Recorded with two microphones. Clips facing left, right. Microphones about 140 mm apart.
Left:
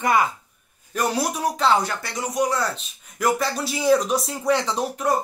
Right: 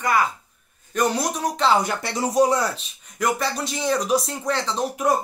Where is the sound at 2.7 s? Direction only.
Centre (ahead or behind).